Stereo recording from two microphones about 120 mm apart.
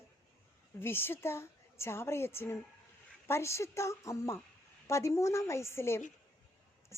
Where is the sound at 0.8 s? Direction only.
20° left (ahead or behind).